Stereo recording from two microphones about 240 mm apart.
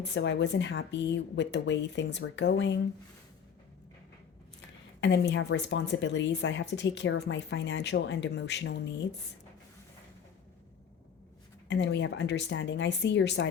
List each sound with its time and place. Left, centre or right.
0.0 s speech: left
4.9 s speech: left
11.7 s speech: left